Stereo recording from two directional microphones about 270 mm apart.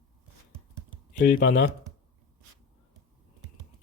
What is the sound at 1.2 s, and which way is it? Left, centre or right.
Speech, left.